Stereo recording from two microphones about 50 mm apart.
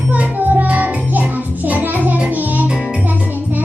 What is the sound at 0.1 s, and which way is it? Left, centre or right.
Music, right.